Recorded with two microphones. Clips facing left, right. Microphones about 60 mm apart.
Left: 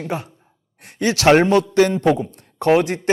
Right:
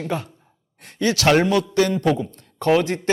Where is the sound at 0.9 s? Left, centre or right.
Left.